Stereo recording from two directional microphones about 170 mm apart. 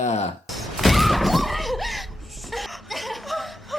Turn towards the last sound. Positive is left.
turn(degrees=0)  # may be behind; listen again after turning